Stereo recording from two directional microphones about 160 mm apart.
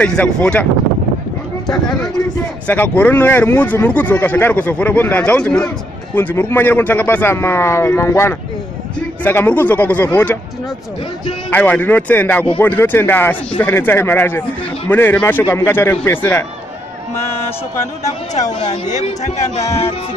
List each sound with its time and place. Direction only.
0.0 s speech: 5° left (ahead or behind)
1.9 s speech: 25° left (ahead or behind)
2.6 s speech: 10° left (ahead or behind)
11.5 s speech: 10° left (ahead or behind)
18.9 s speech: 45° left (ahead or behind)